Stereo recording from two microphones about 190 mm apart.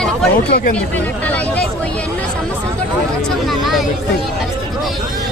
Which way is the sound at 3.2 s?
Centre (ahead or behind).